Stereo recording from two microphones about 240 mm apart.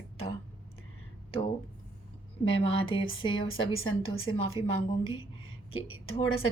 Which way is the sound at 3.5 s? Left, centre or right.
Left.